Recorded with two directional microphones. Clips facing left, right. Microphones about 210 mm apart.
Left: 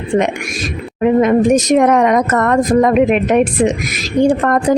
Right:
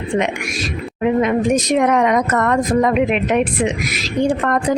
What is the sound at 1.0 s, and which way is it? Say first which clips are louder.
A woman's voice: left 5 dB; 45° left (ahead or behind).